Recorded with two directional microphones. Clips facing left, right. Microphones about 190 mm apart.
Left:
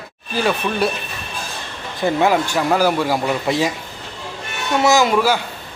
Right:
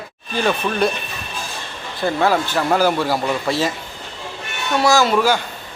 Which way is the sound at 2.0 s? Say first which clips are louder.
Left 1 dB; 15° left (ahead or behind).